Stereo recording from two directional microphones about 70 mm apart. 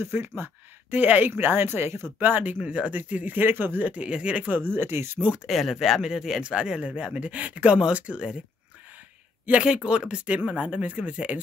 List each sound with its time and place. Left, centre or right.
0.0 s speech: right
2.1 s speech: right
5.2 s speech: centre
5.5 s speech: centre
9.5 s speech: centre